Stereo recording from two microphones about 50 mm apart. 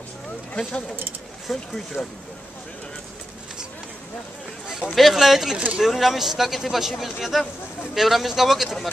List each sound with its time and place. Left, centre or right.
0.6 s speech: centre
2.0 s speech: centre
4.6 s a sound: centre
4.9 s speech: centre